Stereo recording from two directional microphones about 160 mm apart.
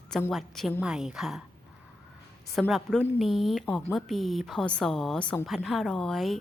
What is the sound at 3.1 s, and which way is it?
A woman's voice, centre (ahead or behind).